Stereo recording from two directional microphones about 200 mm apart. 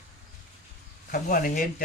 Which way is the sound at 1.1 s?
45° left (ahead or behind).